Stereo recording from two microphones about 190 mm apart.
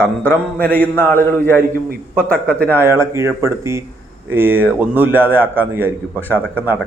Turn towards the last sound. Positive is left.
turn(degrees=-10)  # may be behind; listen again after turning